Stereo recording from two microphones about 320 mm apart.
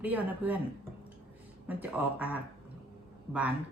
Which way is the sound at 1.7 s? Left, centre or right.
Centre.